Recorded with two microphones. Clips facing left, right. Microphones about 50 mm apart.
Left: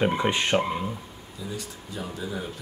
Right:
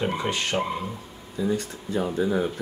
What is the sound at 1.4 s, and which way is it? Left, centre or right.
Speech, right.